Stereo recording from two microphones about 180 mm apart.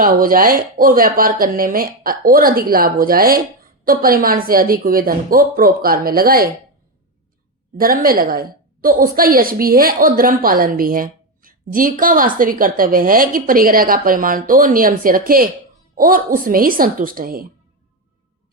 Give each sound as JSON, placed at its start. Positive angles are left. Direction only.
{"t": 0.0, "sound": "a woman's voice", "side_deg": -50}
{"t": 7.8, "sound": "a woman's voice", "side_deg": -55}